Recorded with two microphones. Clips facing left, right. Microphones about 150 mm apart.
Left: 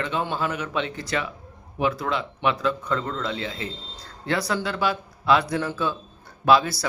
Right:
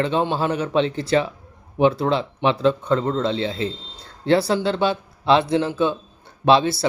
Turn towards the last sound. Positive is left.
turn(degrees=-25)  # may be behind; listen again after turning